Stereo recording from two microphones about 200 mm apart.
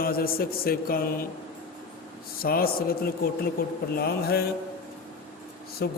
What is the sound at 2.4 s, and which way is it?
A man's voice, 50° left (ahead or behind).